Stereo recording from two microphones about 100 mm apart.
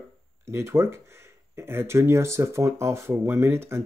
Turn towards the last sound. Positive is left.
turn(degrees=-25)  # may be behind; listen again after turning